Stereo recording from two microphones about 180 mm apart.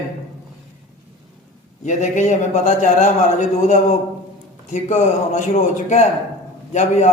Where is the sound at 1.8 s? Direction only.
40° left (ahead or behind).